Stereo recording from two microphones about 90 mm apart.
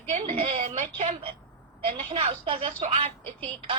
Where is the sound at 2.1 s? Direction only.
90° right.